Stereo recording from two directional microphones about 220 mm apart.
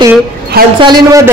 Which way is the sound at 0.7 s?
20° right (ahead or behind).